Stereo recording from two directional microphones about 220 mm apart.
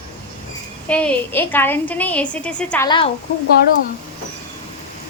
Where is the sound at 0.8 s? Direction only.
5° left (ahead or behind).